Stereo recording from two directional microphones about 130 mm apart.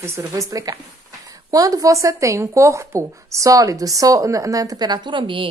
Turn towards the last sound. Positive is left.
turn(degrees=-40)  # may be behind; listen again after turning